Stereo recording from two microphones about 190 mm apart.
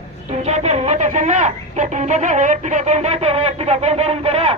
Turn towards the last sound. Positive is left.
turn(degrees=-30)  # may be behind; listen again after turning